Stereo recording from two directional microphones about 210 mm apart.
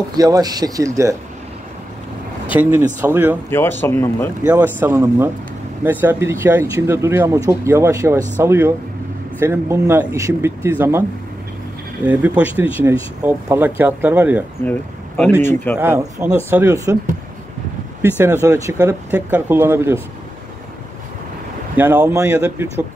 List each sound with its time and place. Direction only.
0.2 s speech: 20° right (ahead or behind)
2.5 s speech: 10° right (ahead or behind)
3.4 s speech: 10° left (ahead or behind)
4.7 s speech: 10° right (ahead or behind)
14.6 s speech: 5° left (ahead or behind)
15.8 s speech: 10° right (ahead or behind)
18.1 s speech: 10° right (ahead or behind)
21.7 s speech: 10° right (ahead or behind)